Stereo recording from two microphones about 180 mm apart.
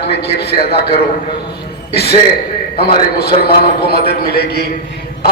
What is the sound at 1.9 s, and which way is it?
A woman's voice, 60° left (ahead or behind).